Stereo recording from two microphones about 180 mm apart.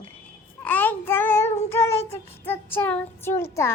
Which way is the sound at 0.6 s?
10° left (ahead or behind).